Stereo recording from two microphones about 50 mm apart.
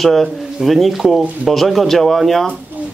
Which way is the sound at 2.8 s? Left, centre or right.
Right.